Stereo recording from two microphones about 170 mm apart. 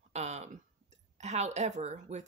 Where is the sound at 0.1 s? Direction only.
40° right (ahead or behind).